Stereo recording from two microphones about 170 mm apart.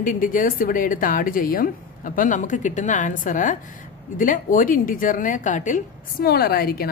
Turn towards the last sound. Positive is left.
turn(degrees=65)  # may be behind; listen again after turning